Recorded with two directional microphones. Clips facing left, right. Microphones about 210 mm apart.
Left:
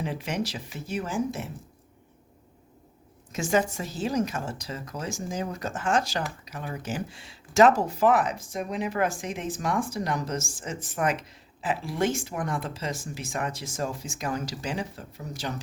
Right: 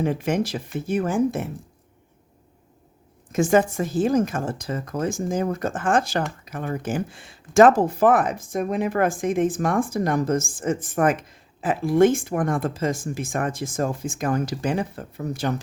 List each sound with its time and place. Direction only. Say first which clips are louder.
0.0 s speech: right 7 dB; 50° right (ahead or behind)
3.3 s speech: right 7 dB; 50° right (ahead or behind)